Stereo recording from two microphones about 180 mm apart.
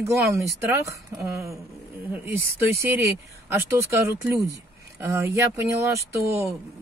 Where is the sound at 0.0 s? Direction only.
15° right (ahead or behind).